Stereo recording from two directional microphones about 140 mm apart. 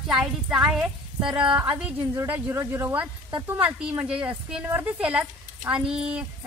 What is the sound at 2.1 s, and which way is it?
Speech, 20° right (ahead or behind).